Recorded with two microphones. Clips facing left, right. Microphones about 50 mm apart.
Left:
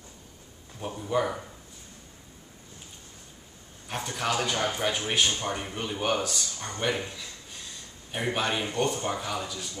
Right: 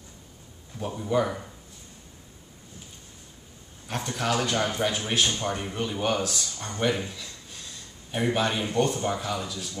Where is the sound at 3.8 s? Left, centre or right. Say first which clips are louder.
Right 2 dB; centre.